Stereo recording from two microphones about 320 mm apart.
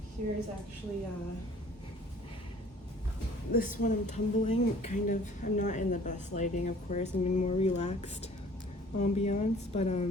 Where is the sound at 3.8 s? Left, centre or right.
Left.